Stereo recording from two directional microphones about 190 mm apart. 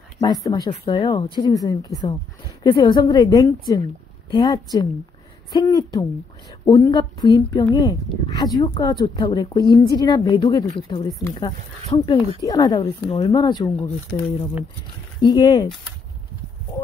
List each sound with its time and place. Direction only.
0.2 s speech: 20° left (ahead or behind)
0.9 s speech: 30° left (ahead or behind)